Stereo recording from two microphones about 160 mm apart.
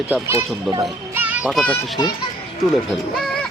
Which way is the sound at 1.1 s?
10° right (ahead or behind).